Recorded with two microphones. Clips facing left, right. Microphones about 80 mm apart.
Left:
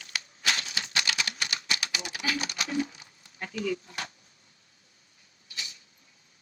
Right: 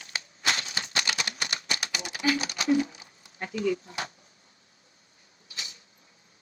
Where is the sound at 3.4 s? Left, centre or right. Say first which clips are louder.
Right 3 dB; right.